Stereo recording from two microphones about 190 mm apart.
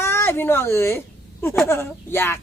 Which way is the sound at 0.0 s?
10° left (ahead or behind).